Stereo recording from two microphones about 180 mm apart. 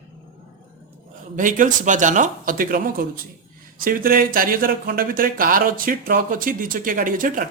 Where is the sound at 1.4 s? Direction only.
45° right (ahead or behind).